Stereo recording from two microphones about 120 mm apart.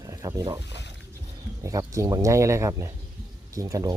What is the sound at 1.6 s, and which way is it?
Speech, 25° right (ahead or behind).